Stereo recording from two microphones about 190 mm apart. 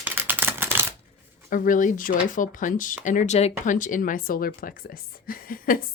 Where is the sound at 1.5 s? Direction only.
45° left (ahead or behind).